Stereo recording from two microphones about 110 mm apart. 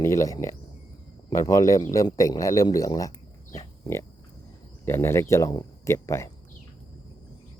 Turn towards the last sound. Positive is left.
turn(degrees=25)  # may be behind; listen again after turning